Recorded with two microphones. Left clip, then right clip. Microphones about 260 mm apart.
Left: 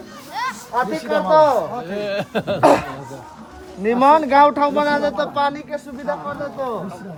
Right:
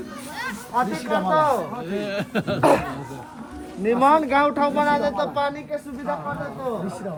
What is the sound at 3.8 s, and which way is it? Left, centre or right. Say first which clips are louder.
Speech: left 4 dB; left.